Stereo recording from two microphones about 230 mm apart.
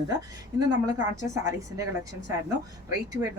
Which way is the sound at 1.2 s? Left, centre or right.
Centre.